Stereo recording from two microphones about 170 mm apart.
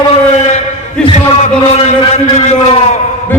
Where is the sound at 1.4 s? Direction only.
40° left (ahead or behind).